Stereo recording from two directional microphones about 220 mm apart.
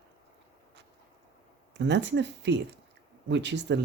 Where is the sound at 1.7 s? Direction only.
50° right (ahead or behind).